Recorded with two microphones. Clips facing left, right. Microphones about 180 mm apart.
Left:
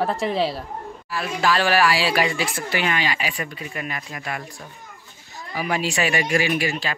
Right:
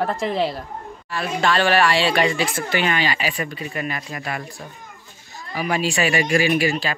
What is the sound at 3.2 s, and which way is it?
Speech, 35° right (ahead or behind).